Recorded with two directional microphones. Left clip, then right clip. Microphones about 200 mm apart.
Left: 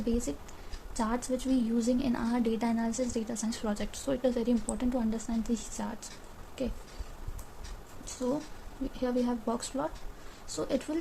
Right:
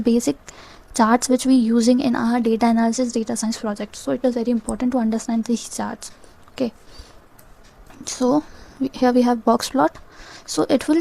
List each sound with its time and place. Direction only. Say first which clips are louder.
0.0 s a woman's voice: right 13 dB; 45° right (ahead or behind)
8.0 s a woman's voice: right 14 dB; 50° right (ahead or behind)